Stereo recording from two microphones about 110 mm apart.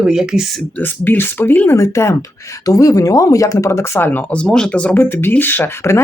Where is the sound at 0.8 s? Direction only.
15° left (ahead or behind).